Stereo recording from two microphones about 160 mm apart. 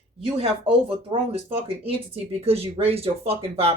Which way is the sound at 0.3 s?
35° right (ahead or behind).